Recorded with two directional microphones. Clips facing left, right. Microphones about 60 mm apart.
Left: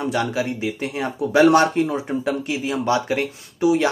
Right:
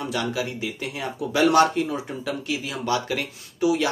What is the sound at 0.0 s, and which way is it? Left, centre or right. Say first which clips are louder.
Speech: left 4 dB; left.